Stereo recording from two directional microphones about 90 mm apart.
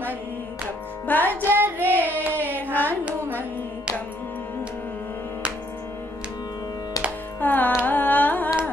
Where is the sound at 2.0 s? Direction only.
20° right (ahead or behind).